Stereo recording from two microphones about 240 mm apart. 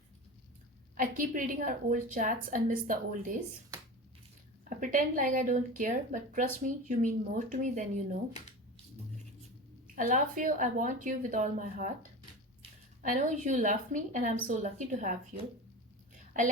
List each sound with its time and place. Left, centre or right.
0.9 s a woman's voice: right
4.7 s a woman's voice: right
9.8 s a woman's voice: right
13.0 s a woman's voice: right